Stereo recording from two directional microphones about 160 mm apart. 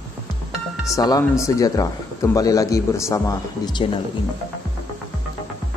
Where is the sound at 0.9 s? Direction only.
20° left (ahead or behind).